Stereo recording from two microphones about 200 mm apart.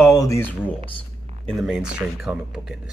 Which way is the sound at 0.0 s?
15° left (ahead or behind).